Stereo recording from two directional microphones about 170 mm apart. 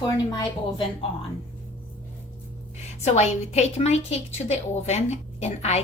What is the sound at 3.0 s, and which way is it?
A woman's voice, 40° left (ahead or behind).